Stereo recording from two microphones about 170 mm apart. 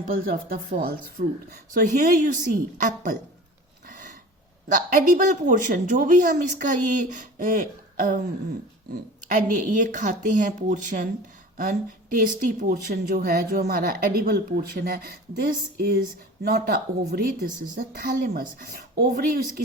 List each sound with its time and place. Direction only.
0.1 s speech: 60° right (ahead or behind)
3.8 s a sound: 55° right (ahead or behind)
4.7 s speech: 50° right (ahead or behind)